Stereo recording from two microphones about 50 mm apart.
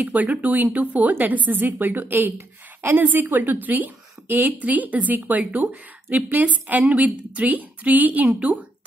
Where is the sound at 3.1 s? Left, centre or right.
Right.